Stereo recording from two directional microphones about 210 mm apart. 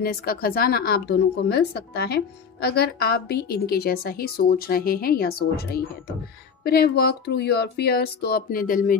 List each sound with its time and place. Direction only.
0.0 s speech: 45° left (ahead or behind)